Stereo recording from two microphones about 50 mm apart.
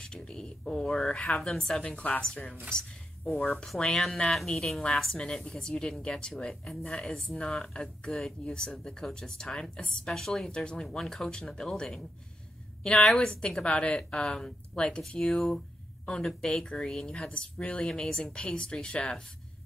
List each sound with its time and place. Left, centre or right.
0.0 s speech: centre
3.4 s speech: centre
10.5 s speech: centre
17.3 s speech: left